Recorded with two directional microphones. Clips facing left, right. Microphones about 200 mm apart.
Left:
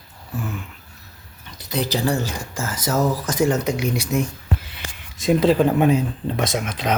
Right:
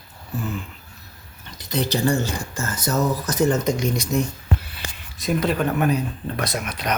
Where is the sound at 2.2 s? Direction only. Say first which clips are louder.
Even; 90° left.